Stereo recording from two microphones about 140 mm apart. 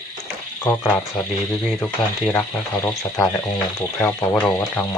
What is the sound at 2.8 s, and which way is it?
Speech, 15° left (ahead or behind).